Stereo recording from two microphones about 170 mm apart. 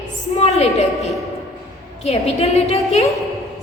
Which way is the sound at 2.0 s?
40° left (ahead or behind).